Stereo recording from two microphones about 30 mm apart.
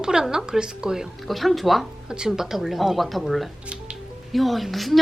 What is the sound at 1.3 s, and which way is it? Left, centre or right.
Speech, centre.